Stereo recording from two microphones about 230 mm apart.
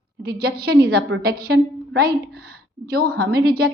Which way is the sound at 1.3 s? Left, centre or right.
Right.